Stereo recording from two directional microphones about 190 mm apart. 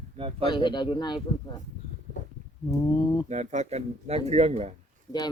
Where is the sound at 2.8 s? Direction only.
25° left (ahead or behind).